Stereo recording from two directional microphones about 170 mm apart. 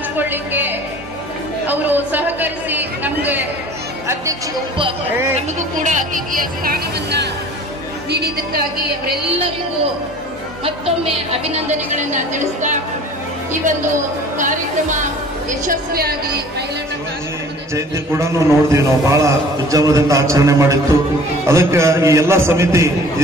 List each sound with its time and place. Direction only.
0.2 s music: 10° right (ahead or behind)
1.7 s a sound: 10° right (ahead or behind)
5.9 s a sound: 50° right (ahead or behind); by 7.2 s 70° right (ahead or behind)
8.1 s music: 65° right (ahead or behind)
14.4 s speech: 50° right (ahead or behind)
15.6 s music: 60° right (ahead or behind)
17.7 s a man's voice: 15° right (ahead or behind)